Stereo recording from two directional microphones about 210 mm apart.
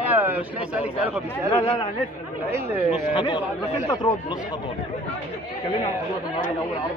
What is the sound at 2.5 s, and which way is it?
Speech, 10° right (ahead or behind).